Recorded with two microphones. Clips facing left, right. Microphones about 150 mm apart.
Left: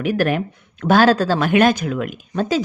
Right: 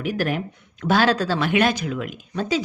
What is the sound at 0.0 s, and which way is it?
Speech, 65° left (ahead or behind).